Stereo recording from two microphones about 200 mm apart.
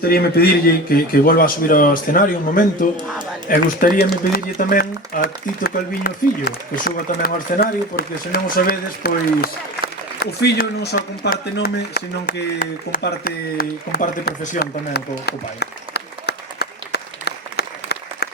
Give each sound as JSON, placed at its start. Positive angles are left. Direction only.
{"t": 0.0, "sound": "speech", "side_deg": 50}